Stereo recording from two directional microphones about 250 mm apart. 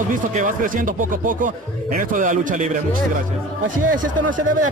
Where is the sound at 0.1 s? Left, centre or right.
Right.